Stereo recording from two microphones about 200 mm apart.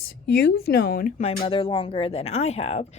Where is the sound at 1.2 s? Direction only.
30° left (ahead or behind).